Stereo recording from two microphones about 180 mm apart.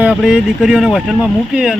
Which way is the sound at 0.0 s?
5° right (ahead or behind).